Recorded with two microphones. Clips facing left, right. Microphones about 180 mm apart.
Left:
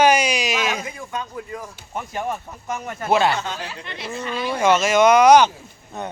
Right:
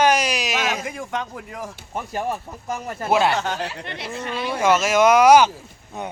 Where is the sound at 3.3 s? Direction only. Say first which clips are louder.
Right 2 dB; 65° right (ahead or behind).